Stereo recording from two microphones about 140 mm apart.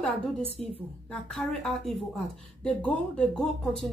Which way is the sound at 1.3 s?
5° left (ahead or behind).